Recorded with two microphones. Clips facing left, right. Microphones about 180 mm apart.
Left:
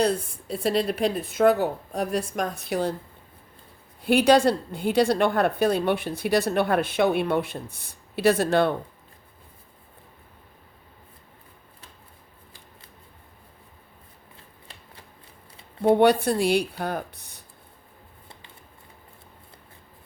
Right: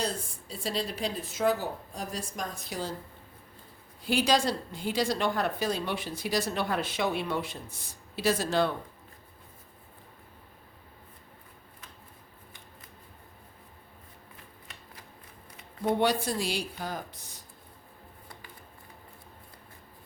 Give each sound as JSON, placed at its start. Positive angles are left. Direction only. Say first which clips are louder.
{"t": 0.0, "sound": "a woman's voice", "louder": "left 10 dB", "side_deg": 60}
{"t": 4.0, "sound": "a woman's voice", "louder": "left 8 dB", "side_deg": 60}
{"t": 14.3, "sound": "shuffling cards", "louder": "left 3 dB", "side_deg": 30}
{"t": 16.0, "sound": "a woman's voice", "louder": "left 8 dB", "side_deg": 60}